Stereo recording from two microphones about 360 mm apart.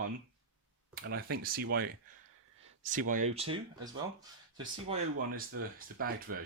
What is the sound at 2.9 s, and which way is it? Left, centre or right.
Speech, right.